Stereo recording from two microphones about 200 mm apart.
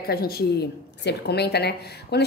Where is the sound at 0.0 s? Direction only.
50° left (ahead or behind).